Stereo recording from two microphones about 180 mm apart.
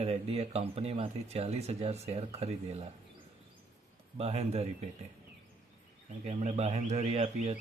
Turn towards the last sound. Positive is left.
turn(degrees=-35)  # may be behind; listen again after turning